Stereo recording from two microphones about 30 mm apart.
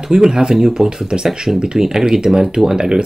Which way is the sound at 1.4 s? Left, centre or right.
Centre.